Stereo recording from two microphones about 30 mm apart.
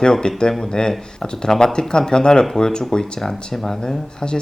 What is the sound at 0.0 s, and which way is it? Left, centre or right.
Speech, left.